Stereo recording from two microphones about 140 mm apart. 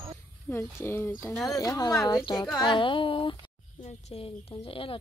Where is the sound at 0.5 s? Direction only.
15° left (ahead or behind).